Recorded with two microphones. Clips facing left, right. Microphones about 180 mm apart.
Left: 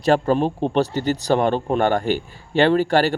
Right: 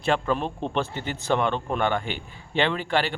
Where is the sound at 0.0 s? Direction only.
40° left (ahead or behind).